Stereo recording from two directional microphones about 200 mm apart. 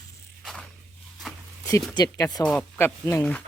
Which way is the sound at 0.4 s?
Centre (ahead or behind).